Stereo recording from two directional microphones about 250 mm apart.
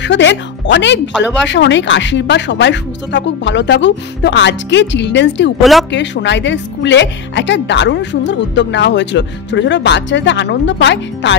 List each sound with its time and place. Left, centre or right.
0.0 s speech: left
5.6 s speech: centre
5.9 s speech: left